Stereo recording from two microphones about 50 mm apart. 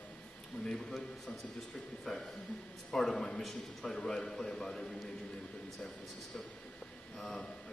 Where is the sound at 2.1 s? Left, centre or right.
Centre.